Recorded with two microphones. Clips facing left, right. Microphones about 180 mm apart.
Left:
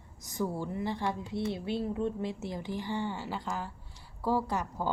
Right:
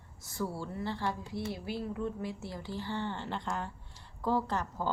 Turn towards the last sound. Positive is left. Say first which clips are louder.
# left 1 dB
turn(degrees=10)  # may be behind; listen again after turning